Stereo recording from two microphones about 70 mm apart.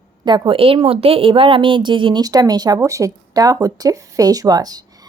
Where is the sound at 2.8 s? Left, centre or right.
Right.